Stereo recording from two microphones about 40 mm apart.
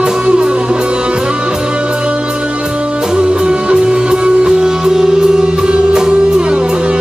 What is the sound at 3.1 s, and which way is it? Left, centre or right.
Music, right.